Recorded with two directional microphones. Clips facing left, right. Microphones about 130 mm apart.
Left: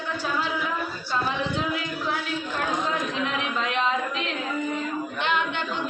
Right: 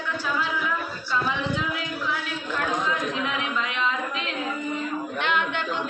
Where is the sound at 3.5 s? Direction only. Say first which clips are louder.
Left 4 dB; 40° left (ahead or behind).